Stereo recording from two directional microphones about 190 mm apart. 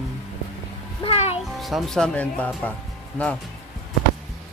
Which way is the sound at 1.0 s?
30° left (ahead or behind).